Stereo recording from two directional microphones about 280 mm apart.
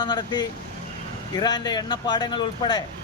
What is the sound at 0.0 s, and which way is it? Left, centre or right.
Speech, centre.